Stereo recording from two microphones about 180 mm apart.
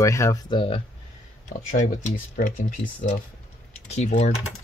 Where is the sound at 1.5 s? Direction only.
45° left (ahead or behind).